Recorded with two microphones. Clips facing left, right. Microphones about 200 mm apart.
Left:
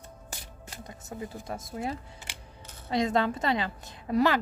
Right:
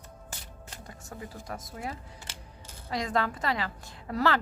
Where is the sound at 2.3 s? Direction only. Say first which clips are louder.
Left 1 dB; 15° left (ahead or behind).